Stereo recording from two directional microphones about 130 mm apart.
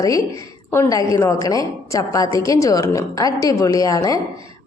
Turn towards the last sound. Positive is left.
turn(degrees=25)  # may be behind; listen again after turning